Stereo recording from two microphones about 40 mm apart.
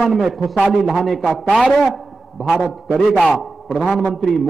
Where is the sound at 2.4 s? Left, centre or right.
Centre.